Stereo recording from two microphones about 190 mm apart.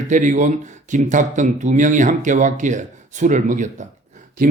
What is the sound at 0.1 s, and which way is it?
Speech, 40° right (ahead or behind).